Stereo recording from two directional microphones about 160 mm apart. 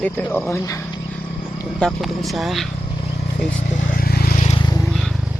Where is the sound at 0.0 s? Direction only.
10° left (ahead or behind).